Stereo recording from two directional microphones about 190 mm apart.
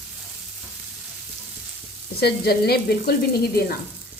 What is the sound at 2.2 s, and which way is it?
Sizzle, 55° left (ahead or behind).